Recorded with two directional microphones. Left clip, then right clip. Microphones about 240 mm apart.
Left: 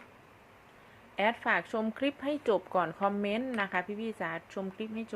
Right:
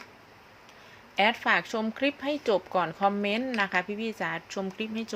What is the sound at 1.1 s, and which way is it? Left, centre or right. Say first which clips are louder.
Speech: right 5 dB; centre.